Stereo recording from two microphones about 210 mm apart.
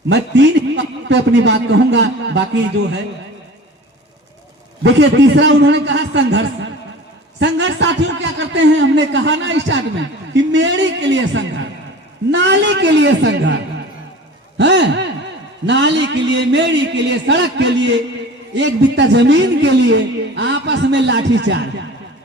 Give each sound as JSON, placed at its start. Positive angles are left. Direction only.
{"t": 0.1, "sound": "a man's voice", "side_deg": -55}
{"t": 4.8, "sound": "a man's voice", "side_deg": -55}
{"t": 14.6, "sound": "a man's voice", "side_deg": -55}